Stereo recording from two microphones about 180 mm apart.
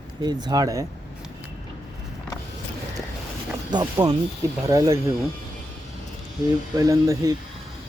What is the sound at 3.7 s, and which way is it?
Speech, 25° right (ahead or behind).